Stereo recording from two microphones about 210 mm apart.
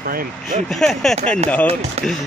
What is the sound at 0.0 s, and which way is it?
Speech, 45° right (ahead or behind).